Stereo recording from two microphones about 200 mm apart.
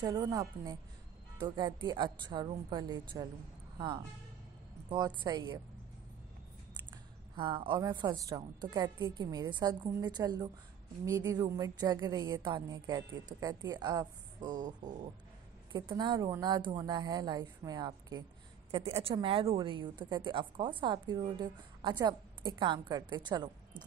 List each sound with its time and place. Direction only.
0.0 s a woman's voice: 20° right (ahead or behind)
6.9 s a woman's voice: 25° right (ahead or behind)
18.7 s a woman's voice: 30° right (ahead or behind)